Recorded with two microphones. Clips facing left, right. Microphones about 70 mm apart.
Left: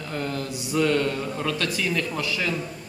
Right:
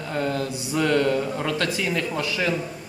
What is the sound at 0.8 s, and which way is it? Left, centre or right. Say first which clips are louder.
A man's voice: right 6 dB; centre.